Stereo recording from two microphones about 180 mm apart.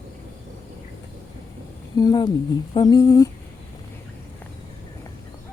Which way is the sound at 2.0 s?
20° left (ahead or behind).